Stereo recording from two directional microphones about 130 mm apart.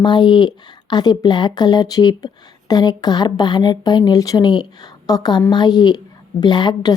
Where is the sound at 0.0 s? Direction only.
35° left (ahead or behind).